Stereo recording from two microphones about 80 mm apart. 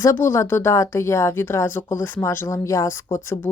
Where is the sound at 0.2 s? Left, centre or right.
Left.